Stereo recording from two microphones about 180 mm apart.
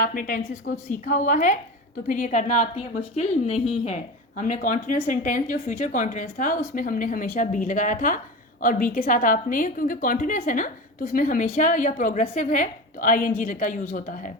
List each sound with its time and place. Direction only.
0.0 s a woman's voice: 50° left (ahead or behind)